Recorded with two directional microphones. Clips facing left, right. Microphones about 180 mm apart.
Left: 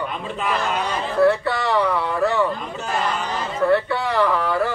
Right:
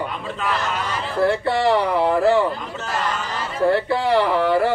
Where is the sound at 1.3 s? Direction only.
30° right (ahead or behind).